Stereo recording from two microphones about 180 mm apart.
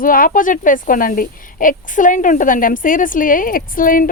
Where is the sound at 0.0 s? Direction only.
50° left (ahead or behind).